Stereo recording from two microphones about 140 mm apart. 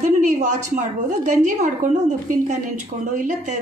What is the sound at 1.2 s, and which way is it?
A woman's voice, 60° right (ahead or behind).